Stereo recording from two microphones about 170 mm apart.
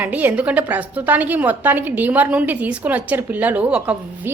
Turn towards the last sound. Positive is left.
turn(degrees=-10)  # may be behind; listen again after turning